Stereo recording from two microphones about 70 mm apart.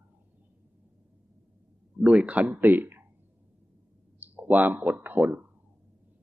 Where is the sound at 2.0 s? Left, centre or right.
Centre.